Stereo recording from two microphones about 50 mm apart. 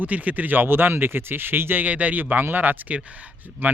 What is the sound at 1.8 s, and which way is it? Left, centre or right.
Speech, right.